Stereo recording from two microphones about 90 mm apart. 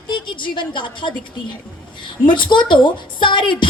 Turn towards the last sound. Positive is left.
turn(degrees=65)  # may be behind; listen again after turning